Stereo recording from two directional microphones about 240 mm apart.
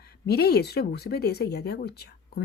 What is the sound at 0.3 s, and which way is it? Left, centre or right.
A woman's voice, left.